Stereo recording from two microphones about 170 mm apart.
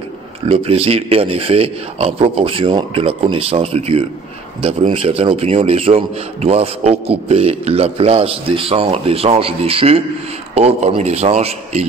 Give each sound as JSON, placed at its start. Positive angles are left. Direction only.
{"t": 0.5, "sound": "a man's voice", "side_deg": -35}